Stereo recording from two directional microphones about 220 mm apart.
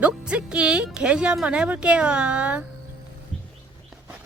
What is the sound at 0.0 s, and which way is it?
Speech, 5° right (ahead or behind).